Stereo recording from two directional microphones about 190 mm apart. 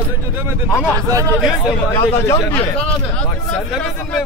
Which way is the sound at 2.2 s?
15° left (ahead or behind).